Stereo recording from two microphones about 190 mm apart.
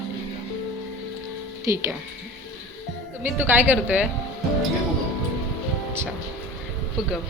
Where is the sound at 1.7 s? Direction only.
15° right (ahead or behind).